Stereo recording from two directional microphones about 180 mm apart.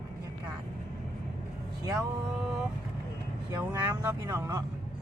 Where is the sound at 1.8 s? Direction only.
15° right (ahead or behind).